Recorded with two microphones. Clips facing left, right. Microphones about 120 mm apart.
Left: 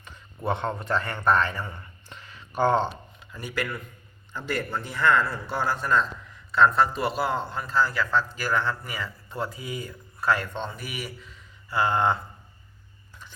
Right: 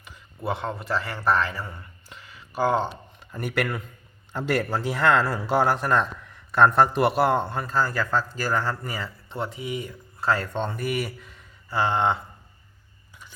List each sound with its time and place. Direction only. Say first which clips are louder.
0.0 s speech: left 1 dB; 5° right (ahead or behind)
3.3 s speech: right 5 dB; 55° right (ahead or behind)
4.3 s a man's voice: right 5 dB; 80° right; by 7.6 s 60° right (ahead or behind)
7.6 s speech: even; 45° right (ahead or behind)
10.7 s speech: right 8 dB; 50° right (ahead or behind)
11.7 s mantra: even; 25° right (ahead or behind)